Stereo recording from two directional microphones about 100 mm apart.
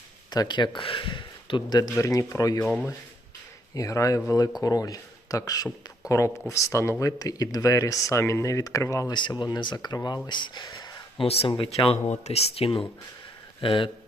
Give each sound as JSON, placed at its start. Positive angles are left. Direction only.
{"t": 0.3, "sound": "speech", "side_deg": 45}
{"t": 2.0, "sound": "speech", "side_deg": 30}
{"t": 3.8, "sound": "speech", "side_deg": 30}
{"t": 9.1, "sound": "speech", "side_deg": 50}
{"t": 11.3, "sound": "speech", "side_deg": 70}